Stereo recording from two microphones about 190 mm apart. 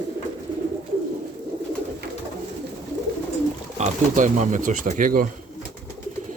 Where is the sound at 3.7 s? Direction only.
40° right (ahead or behind).